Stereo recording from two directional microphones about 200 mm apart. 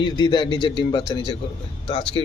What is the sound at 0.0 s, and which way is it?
Speech, 25° left (ahead or behind).